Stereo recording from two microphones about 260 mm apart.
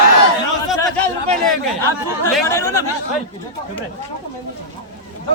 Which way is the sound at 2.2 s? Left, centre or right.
Centre.